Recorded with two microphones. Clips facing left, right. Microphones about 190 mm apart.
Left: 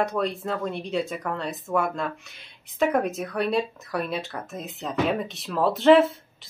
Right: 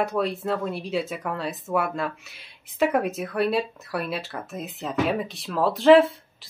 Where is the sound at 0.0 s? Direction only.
Centre (ahead or behind).